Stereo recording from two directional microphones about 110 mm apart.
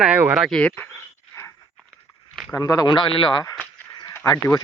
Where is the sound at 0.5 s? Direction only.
10° left (ahead or behind).